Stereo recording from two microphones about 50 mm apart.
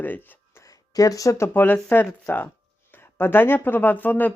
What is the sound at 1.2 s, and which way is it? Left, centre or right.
Speech, left.